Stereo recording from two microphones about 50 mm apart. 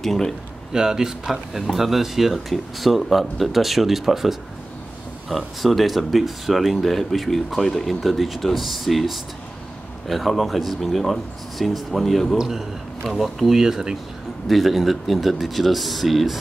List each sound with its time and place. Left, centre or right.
0.0 s speech: centre
0.7 s speech: centre
12.4 s speech: centre
13.0 s speech: centre